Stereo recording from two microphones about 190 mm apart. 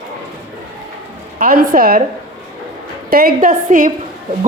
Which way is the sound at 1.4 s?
50° right (ahead or behind).